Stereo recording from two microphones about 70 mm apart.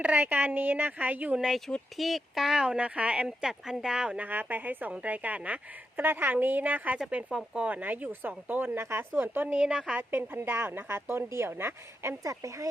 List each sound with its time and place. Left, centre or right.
0.0 s speech: right
1.4 s speech: centre
4.3 s speech: right
12.2 s speech: right